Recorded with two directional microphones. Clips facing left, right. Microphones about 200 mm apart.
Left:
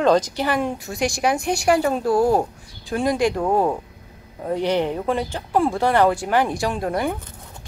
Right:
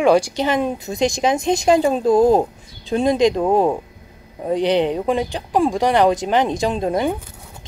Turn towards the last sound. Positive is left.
turn(degrees=-20)  # may be behind; listen again after turning